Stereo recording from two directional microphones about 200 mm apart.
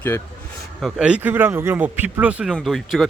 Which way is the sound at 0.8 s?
5° right (ahead or behind).